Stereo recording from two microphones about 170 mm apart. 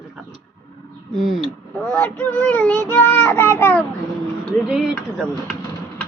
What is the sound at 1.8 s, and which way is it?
A child's voice, 10° left (ahead or behind).